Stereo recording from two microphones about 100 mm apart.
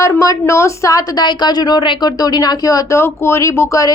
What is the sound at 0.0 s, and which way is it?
A woman's voice, 30° left (ahead or behind).